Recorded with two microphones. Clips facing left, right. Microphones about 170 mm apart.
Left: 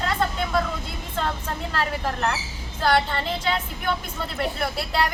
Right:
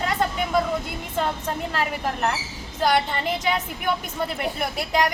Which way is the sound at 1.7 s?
15° right (ahead or behind).